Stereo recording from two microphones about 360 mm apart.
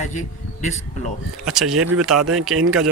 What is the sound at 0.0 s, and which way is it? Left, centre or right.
Speech, centre.